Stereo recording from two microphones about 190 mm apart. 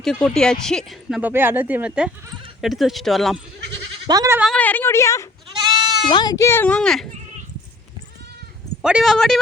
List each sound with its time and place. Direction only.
0.0 s speech: 5° left (ahead or behind)
4.0 s speech: 20° right (ahead or behind)
4.5 s a child's voice: 10° left (ahead or behind)
5.5 s goat: 25° right (ahead or behind)
6.1 s a child's voice: 25° left (ahead or behind); by 7.1 s 5° left (ahead or behind)
8.8 s speech: 5° right (ahead or behind)